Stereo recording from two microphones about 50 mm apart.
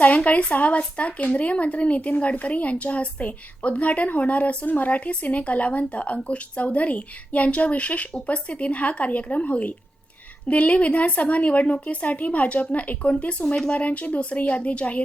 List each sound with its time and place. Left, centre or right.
0.0 s speech: left